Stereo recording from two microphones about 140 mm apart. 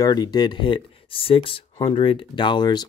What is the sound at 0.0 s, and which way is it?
Speech, 30° left (ahead or behind).